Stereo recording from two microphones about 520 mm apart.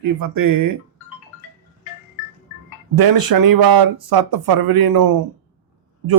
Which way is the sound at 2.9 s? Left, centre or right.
Right.